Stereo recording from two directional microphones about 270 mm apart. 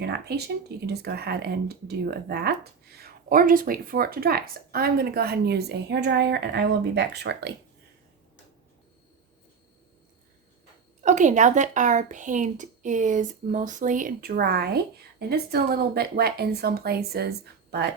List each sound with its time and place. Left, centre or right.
0.0 s speech: right
11.0 s speech: right